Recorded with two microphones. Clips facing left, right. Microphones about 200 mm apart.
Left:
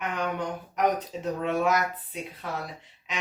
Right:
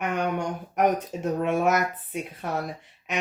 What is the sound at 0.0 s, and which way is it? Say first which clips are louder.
Speech: right 3 dB; 50° right (ahead or behind).